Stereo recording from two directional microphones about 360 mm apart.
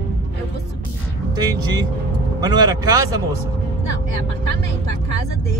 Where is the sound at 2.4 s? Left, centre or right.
Centre.